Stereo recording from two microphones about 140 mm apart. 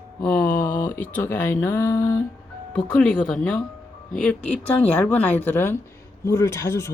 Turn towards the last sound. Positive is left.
turn(degrees=20)  # may be behind; listen again after turning